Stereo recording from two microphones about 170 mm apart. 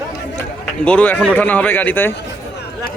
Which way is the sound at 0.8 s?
5° left (ahead or behind).